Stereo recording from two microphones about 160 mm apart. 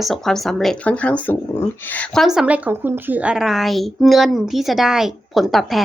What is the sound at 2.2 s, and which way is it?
Speech, 5° right (ahead or behind).